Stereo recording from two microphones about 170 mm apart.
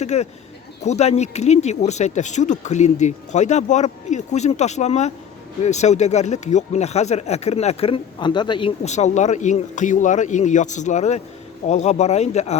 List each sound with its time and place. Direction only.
0.0 s speech: 40° left (ahead or behind)
8.8 s speech: 40° left (ahead or behind)